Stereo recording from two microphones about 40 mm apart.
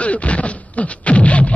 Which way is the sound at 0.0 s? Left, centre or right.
Left.